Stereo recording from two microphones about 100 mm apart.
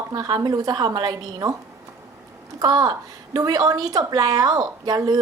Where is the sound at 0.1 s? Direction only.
40° right (ahead or behind).